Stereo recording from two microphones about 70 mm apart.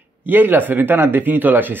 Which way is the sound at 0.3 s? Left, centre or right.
Right.